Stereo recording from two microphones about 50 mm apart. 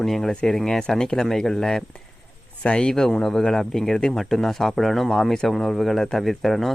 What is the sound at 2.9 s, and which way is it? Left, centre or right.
Speech, centre.